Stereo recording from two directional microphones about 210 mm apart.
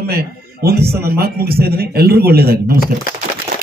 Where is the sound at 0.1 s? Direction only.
50° right (ahead or behind).